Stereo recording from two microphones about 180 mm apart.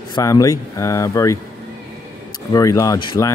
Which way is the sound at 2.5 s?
20° left (ahead or behind).